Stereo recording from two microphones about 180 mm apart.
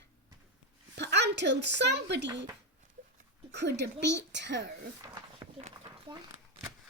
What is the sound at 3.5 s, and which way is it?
A woman's voice, 70° right (ahead or behind).